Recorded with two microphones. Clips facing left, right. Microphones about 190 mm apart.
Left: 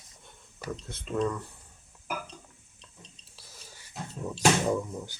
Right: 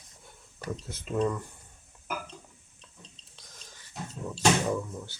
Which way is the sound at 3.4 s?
5° left (ahead or behind).